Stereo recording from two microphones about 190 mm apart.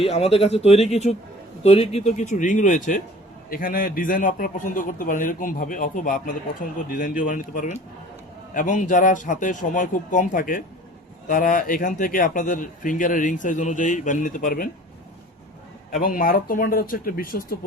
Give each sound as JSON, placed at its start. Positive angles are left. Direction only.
{"t": 0.0, "sound": "a man's voice", "side_deg": 30}
{"t": 15.9, "sound": "a man's voice", "side_deg": 45}